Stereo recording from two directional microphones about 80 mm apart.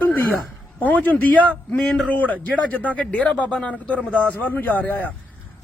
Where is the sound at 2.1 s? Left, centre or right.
Centre.